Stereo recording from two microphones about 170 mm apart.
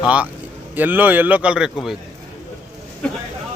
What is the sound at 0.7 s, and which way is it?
Speech, 10° right (ahead or behind).